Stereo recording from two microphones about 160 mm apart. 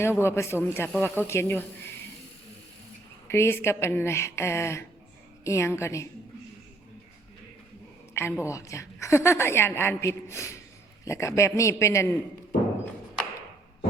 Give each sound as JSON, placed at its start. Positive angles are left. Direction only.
{"t": 0.0, "sound": "a woman's voice", "side_deg": 15}
{"t": 3.2, "sound": "a woman's voice", "side_deg": 15}
{"t": 8.1, "sound": "a woman's voice", "side_deg": 15}